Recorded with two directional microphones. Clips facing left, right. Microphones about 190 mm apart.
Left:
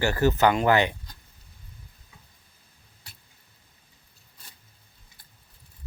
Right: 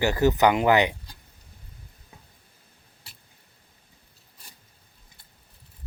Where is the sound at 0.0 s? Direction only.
15° right (ahead or behind).